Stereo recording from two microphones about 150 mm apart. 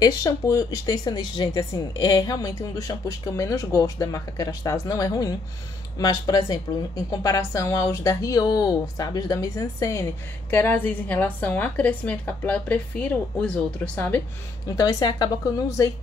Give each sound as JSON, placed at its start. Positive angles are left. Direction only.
{"t": 0.0, "sound": "a woman's voice", "side_deg": 25}
{"t": 14.8, "sound": "speech", "side_deg": 25}